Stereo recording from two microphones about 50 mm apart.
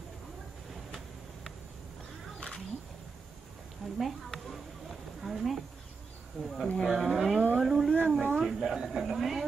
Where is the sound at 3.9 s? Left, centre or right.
Centre.